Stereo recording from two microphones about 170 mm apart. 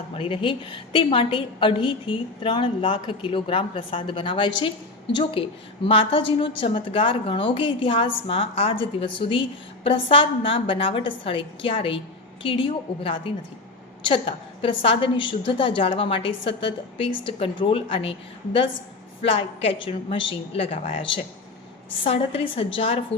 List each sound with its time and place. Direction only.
0.1 s a woman's voice: 30° left (ahead or behind)